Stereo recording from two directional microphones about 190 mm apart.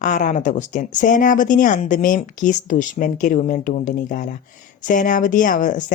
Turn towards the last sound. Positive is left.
turn(degrees=45)  # may be behind; listen again after turning